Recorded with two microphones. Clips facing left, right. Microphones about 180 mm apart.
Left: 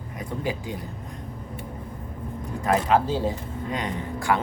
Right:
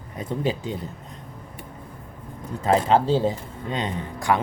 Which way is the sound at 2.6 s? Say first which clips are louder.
Right 2 dB; 25° right (ahead or behind).